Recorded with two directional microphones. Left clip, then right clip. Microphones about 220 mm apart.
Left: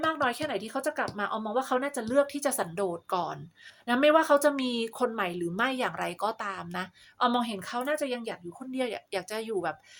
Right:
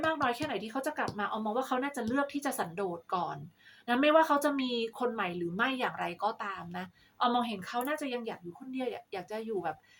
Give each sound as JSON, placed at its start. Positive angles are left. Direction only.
{"t": 0.0, "sound": "speech", "side_deg": 45}